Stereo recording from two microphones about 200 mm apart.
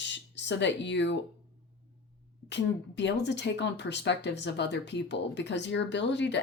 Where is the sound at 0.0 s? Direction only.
60° left (ahead or behind).